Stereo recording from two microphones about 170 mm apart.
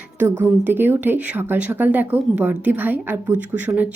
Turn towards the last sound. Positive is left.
turn(degrees=-10)  # may be behind; listen again after turning